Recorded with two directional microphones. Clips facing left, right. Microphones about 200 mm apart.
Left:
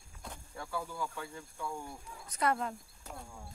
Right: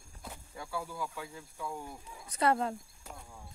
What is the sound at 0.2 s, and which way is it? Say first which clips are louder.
Speech: even; 5° right (ahead or behind).